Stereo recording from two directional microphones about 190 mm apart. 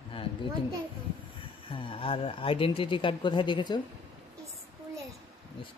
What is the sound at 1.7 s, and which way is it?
Speech, 30° left (ahead or behind).